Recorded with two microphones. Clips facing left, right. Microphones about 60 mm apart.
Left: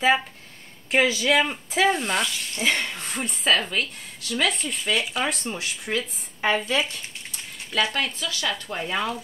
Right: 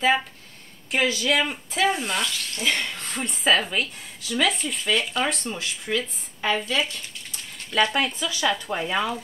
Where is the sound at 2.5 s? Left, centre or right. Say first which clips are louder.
Left 2 dB; left.